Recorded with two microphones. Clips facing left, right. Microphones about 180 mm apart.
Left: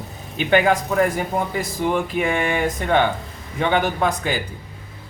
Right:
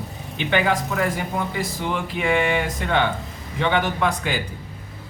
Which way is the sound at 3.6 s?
45° left (ahead or behind).